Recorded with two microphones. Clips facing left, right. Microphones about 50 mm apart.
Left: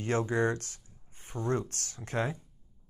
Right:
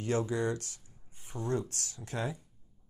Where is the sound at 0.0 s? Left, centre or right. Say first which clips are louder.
Left 2 dB; left.